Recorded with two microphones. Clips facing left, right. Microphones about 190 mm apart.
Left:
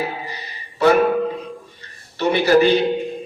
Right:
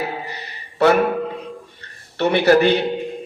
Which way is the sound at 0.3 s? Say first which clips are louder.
Even; 60° right (ahead or behind).